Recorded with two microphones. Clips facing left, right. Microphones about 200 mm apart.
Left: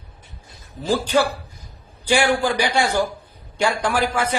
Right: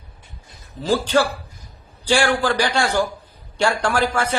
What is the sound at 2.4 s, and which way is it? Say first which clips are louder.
A man's voice: even; 20° left (ahead or behind).